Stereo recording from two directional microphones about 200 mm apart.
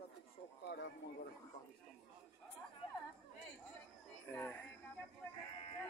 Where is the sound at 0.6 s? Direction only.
60° left (ahead or behind).